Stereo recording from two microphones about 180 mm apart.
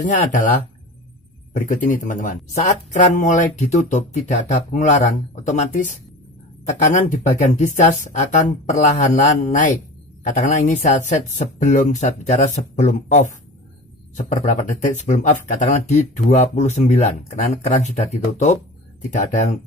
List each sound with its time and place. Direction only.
0.0 s speech: 45° left (ahead or behind)
19.1 s speech: 45° left (ahead or behind)